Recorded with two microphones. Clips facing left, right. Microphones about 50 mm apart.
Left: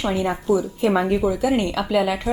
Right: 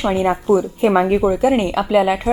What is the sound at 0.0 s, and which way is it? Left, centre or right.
A woman's voice, right.